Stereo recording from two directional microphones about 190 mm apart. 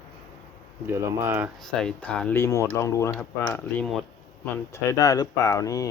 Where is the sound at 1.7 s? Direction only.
5° left (ahead or behind).